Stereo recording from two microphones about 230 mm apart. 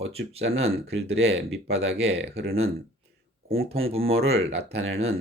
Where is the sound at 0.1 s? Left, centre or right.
Right.